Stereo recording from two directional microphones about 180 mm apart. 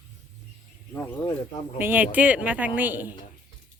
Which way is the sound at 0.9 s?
10° left (ahead or behind).